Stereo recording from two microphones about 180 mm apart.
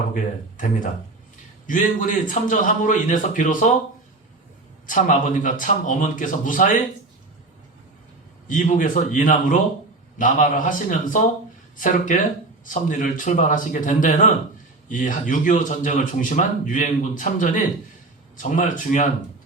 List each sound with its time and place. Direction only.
0.1 s speech: 45° left (ahead or behind)
4.9 s speech: 45° left (ahead or behind)
8.4 s speech: 45° left (ahead or behind)